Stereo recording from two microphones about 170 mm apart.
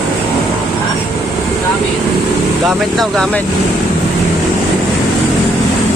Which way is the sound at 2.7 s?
Centre (ahead or behind).